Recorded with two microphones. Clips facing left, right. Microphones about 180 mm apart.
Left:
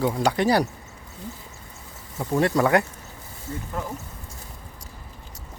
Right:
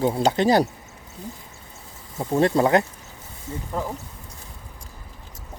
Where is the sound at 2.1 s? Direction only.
25° right (ahead or behind).